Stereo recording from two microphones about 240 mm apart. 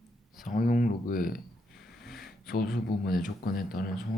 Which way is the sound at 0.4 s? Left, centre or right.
Left.